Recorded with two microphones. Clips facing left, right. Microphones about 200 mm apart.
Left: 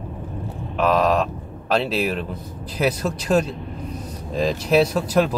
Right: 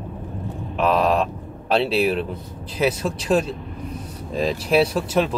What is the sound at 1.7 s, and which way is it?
Speech, 30° right (ahead or behind).